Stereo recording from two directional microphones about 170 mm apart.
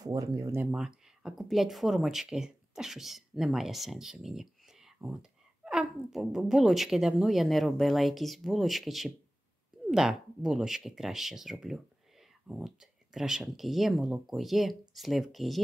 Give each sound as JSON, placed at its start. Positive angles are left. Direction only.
{"t": 0.0, "sound": "speech", "side_deg": -20}
{"t": 0.7, "sound": "speech", "side_deg": -5}